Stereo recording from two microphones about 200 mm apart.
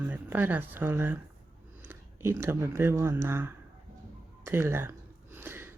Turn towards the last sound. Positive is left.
turn(degrees=-10)  # may be behind; listen again after turning